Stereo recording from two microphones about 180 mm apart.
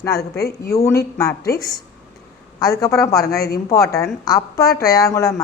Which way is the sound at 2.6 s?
20° left (ahead or behind).